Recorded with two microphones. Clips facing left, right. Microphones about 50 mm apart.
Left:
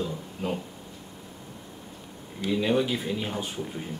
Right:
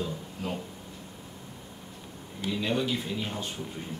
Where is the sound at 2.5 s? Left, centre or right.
Centre.